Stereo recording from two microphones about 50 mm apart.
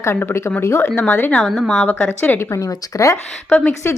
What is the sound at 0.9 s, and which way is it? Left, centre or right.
Speech, left.